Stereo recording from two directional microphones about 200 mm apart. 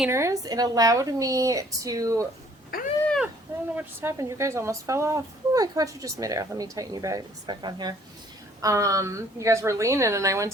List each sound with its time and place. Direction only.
0.0 s a woman's voice: 15° right (ahead or behind)
2.7 s cat: 50° left (ahead or behind)
3.8 s a woman's voice: 15° right (ahead or behind)